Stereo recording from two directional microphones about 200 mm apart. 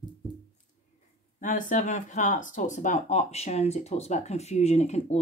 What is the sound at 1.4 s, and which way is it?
Speech, 40° left (ahead or behind).